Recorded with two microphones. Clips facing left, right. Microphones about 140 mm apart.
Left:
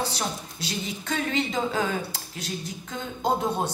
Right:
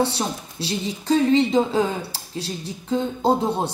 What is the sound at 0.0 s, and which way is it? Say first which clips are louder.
A woman's voice: right 7 dB; 30° right (ahead or behind).